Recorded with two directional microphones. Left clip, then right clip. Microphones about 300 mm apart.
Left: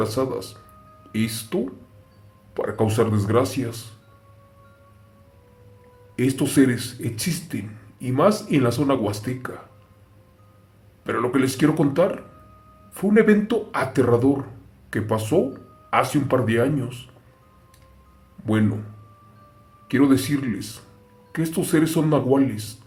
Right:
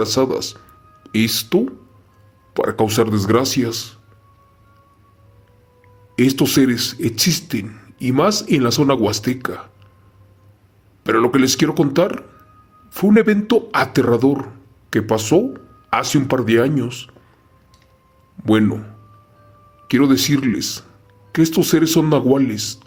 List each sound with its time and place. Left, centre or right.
0.0 s speech: right
6.1 s speech: right
11.0 s speech: right
18.4 s speech: right
19.9 s speech: right